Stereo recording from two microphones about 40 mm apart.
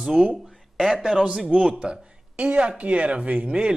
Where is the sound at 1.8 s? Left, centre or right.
Right.